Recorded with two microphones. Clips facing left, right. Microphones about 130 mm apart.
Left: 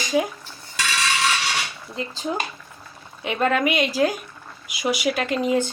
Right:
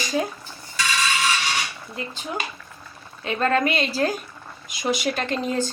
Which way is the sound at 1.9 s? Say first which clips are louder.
Left 4 dB; 35° left (ahead or behind).